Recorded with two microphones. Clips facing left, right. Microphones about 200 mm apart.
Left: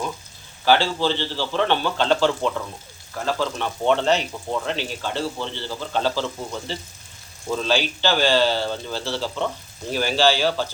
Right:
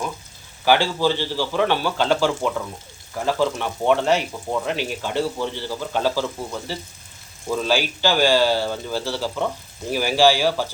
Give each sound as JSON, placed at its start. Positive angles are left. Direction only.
{"t": 0.6, "sound": "speech", "side_deg": -15}